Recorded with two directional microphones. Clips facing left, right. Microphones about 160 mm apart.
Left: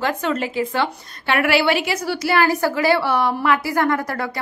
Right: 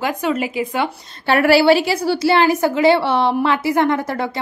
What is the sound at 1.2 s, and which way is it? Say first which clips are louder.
A woman's voice: right 6 dB; 35° right (ahead or behind).